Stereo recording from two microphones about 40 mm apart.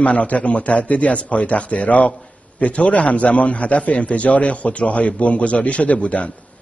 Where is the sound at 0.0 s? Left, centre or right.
Left.